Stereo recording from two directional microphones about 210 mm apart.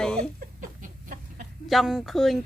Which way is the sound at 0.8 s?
40° right (ahead or behind).